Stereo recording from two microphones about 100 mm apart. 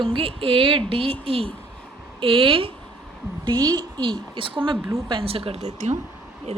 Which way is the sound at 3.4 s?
45° right (ahead or behind).